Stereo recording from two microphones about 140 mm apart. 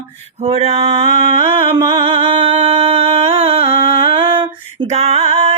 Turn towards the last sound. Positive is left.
turn(degrees=-45)  # may be behind; listen again after turning